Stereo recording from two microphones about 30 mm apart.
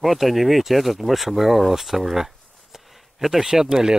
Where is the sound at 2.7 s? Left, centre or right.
Centre.